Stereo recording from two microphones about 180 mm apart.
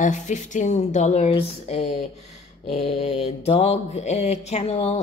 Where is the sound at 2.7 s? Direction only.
35° left (ahead or behind).